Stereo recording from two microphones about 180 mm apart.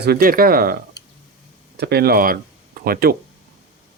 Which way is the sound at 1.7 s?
65° right (ahead or behind).